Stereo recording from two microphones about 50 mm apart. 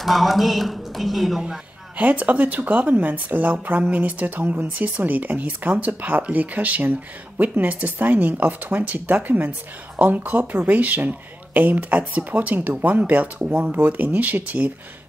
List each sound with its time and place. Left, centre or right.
0.0 s speech: centre
2.0 s speech: right